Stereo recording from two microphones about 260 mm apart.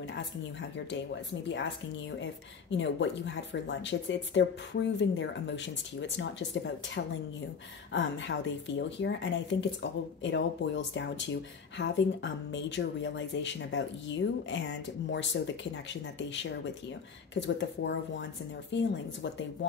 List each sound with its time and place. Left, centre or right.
0.6 s speech: left
2.7 s speech: left